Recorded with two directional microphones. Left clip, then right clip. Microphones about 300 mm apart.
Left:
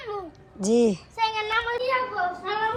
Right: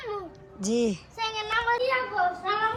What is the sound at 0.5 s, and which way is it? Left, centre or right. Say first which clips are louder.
Speech: left 6 dB; centre.